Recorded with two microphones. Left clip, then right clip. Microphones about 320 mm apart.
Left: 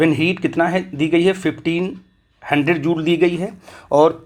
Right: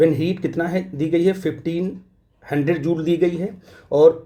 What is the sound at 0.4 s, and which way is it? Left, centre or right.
Speech, centre.